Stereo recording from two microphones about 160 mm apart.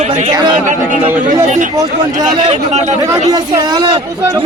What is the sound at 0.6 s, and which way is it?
Speech, 50° right (ahead or behind).